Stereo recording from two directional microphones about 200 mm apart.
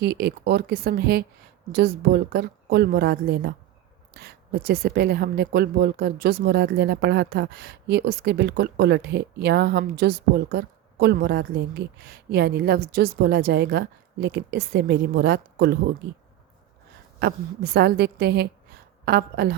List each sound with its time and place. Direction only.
0.0 s speech: 55° right (ahead or behind)
17.2 s a woman's voice: 55° right (ahead or behind)